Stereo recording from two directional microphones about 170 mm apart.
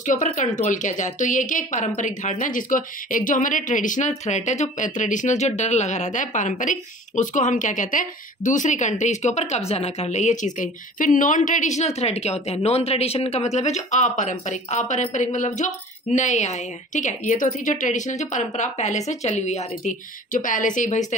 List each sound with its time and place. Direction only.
0.0 s speech: 50° left (ahead or behind)